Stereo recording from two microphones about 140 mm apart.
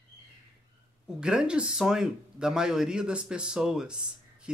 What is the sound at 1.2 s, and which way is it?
Speech, 5° right (ahead or behind).